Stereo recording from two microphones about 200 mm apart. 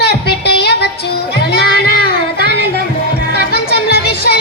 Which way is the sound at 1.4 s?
55° left (ahead or behind).